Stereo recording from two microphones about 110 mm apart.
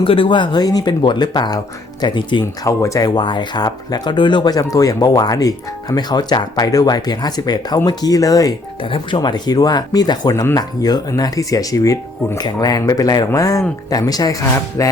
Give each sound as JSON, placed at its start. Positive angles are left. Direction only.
{"t": 0.0, "sound": "speech", "side_deg": 50}
{"t": 2.6, "sound": "speech", "side_deg": 30}
{"t": 3.2, "sound": "speech", "side_deg": 45}
{"t": 8.8, "sound": "speech", "side_deg": 50}